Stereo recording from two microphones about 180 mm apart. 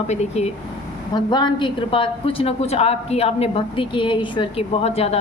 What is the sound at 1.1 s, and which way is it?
A woman's voice, 25° left (ahead or behind).